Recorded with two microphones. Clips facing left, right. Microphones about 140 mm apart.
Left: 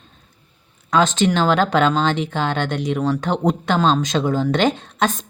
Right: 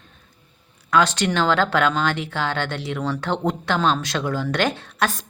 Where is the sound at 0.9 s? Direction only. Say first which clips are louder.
Left 3 dB; 20° left (ahead or behind).